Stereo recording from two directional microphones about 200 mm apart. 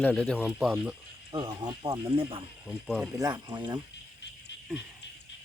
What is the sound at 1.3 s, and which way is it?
Speech, 20° right (ahead or behind).